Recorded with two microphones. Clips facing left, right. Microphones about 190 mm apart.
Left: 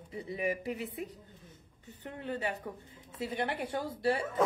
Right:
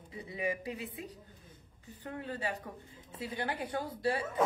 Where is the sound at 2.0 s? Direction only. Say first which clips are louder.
Left 2 dB; 20° left (ahead or behind).